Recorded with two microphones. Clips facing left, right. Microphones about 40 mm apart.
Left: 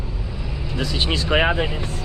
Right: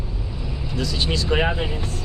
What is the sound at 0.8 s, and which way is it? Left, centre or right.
Speech, left.